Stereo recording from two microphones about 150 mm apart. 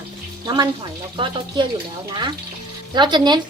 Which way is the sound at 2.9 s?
30° right (ahead or behind).